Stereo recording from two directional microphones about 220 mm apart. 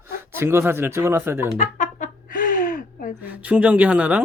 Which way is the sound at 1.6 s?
35° left (ahead or behind).